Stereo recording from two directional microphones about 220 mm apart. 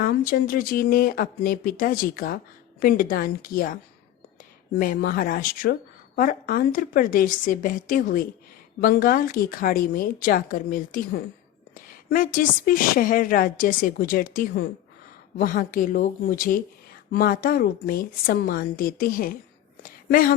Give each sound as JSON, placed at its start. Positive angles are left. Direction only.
{"t": 0.0, "sound": "speech", "side_deg": 40}
{"t": 4.8, "sound": "speech", "side_deg": 40}
{"t": 19.8, "sound": "a sound", "side_deg": 40}